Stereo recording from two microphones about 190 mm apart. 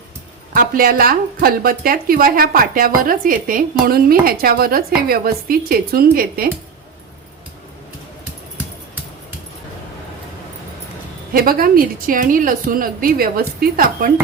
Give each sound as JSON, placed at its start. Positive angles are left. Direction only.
{"t": 0.5, "sound": "a woman's voice", "side_deg": -50}
{"t": 11.3, "sound": "a woman's voice", "side_deg": -50}